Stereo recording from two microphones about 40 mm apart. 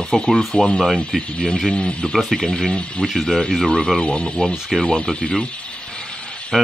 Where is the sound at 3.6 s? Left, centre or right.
Centre.